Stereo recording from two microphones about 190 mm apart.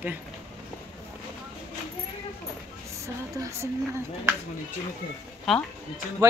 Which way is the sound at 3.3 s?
15° right (ahead or behind).